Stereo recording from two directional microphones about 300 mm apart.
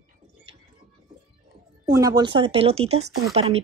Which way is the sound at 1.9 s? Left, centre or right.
Centre.